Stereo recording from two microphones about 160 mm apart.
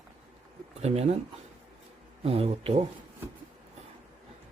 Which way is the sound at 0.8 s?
40° right (ahead or behind).